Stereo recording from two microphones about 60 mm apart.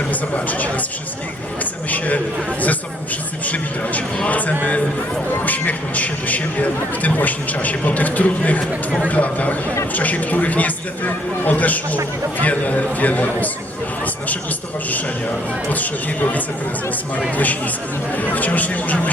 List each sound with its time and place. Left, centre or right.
0.1 s speech: left
1.9 s speech: left
15.7 s speech: left